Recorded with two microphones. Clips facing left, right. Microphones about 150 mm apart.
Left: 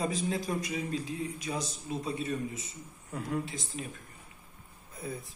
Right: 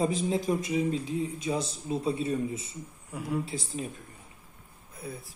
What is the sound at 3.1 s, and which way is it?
Speech, 5° right (ahead or behind).